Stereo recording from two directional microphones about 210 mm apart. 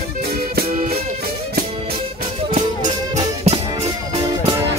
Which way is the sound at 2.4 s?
35° right (ahead or behind).